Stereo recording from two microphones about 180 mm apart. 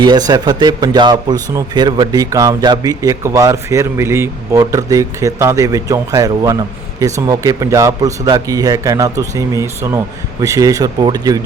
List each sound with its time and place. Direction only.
0.0 s speech: 20° right (ahead or behind)